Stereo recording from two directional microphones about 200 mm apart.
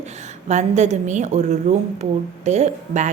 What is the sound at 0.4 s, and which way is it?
Speech, 35° right (ahead or behind).